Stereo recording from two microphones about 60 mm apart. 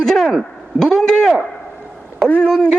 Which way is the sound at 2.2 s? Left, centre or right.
Left.